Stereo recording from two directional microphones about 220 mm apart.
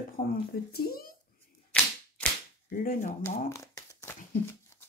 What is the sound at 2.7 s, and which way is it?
Speech, 40° left (ahead or behind).